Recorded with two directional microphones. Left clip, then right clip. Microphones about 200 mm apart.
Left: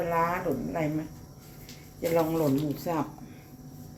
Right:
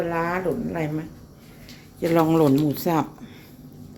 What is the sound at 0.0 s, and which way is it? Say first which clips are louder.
Speech: right 3 dB; 25° right (ahead or behind).